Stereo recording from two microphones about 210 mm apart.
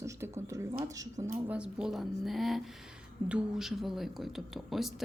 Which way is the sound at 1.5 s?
5° right (ahead or behind).